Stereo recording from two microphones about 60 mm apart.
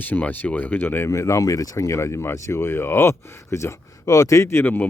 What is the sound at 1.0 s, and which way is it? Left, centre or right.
Speech, left.